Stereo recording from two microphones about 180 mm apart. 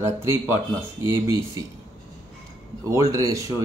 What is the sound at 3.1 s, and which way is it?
Speech, 20° right (ahead or behind).